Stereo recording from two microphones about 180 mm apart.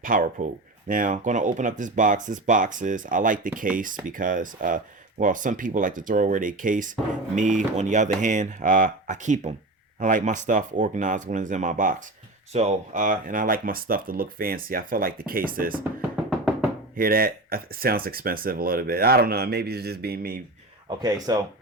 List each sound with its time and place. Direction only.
0.0 s speech: 50° right (ahead or behind)
15.8 s music: 5° right (ahead or behind)
16.9 s speech: 55° right (ahead or behind)
21.0 s speech: 20° right (ahead or behind)